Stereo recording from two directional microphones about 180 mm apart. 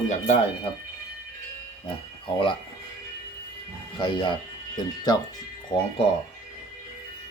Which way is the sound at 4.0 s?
25° left (ahead or behind).